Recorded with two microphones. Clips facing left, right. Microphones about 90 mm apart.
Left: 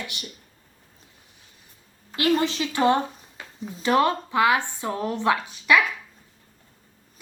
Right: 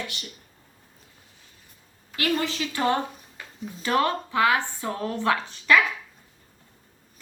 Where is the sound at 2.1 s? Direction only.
25° left (ahead or behind).